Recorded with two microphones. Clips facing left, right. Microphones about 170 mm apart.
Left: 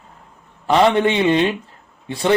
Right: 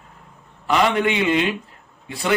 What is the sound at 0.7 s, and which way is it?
Speech, 30° left (ahead or behind).